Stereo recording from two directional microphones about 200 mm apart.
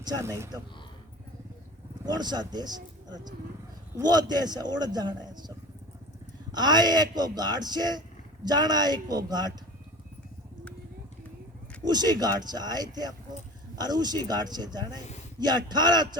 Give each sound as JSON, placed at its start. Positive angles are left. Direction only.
{"t": 0.0, "sound": "speech", "side_deg": -15}
{"t": 2.0, "sound": "a man's voice", "side_deg": -20}
{"t": 6.5, "sound": "a man's voice", "side_deg": -20}
{"t": 11.8, "sound": "a man's voice", "side_deg": -20}